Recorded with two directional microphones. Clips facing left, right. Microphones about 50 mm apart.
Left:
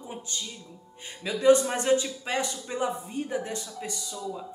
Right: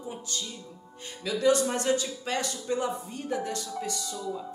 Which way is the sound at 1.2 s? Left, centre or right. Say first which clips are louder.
Left 3 dB; left.